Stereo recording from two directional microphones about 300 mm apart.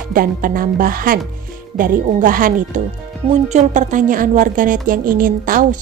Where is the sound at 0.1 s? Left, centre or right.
Right.